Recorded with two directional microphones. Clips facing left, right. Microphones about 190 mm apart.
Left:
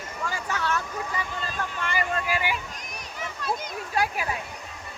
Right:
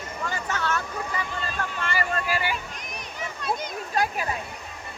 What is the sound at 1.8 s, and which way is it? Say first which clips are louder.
Vehicle: even; 15° left (ahead or behind).